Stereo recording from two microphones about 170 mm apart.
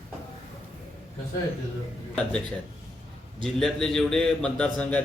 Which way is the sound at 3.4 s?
5° left (ahead or behind).